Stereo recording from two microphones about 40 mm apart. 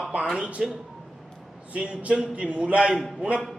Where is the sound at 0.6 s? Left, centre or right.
Centre.